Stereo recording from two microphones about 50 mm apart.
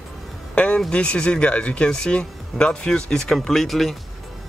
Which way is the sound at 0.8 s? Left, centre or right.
Left.